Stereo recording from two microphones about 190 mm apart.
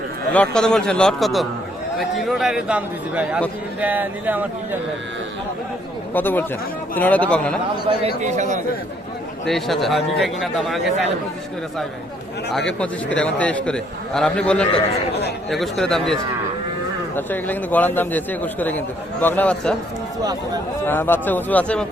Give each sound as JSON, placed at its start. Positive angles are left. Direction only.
{"t": 0.3, "sound": "a man's voice", "side_deg": 5}
{"t": 6.1, "sound": "a man's voice", "side_deg": 10}
{"t": 7.9, "sound": "a man's voice", "side_deg": -35}
{"t": 9.5, "sound": "a man's voice", "side_deg": 0}
{"t": 12.5, "sound": "a man's voice", "side_deg": 5}
{"t": 17.2, "sound": "a man's voice", "side_deg": 10}
{"t": 20.8, "sound": "a man's voice", "side_deg": 10}